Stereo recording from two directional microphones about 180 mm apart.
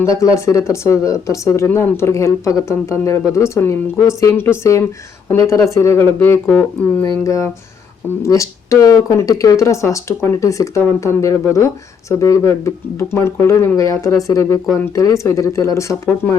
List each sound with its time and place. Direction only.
0.0 s speech: 15° left (ahead or behind)